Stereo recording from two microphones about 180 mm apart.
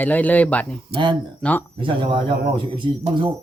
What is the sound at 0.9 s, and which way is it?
Speech, 30° right (ahead or behind).